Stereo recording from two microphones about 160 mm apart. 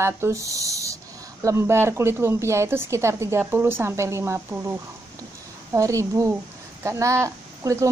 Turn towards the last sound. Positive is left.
turn(degrees=-20)  # may be behind; listen again after turning